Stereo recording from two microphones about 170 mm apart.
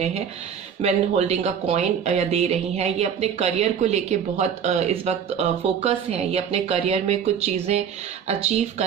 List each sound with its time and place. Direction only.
0.8 s speech: 40° right (ahead or behind)